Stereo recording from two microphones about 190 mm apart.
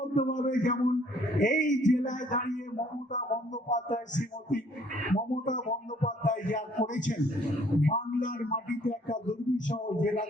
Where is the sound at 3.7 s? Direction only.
40° left (ahead or behind).